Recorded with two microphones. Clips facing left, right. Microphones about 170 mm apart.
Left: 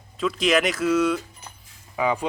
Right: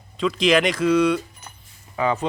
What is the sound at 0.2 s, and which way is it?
Speech, 5° left (ahead or behind).